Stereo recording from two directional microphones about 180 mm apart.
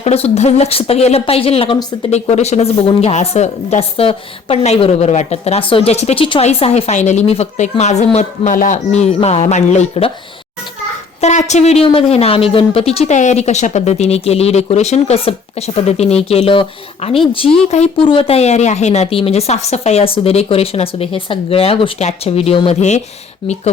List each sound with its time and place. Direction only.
0.0 s a woman's voice: 35° left (ahead or behind)
11.2 s a woman's voice: 40° left (ahead or behind)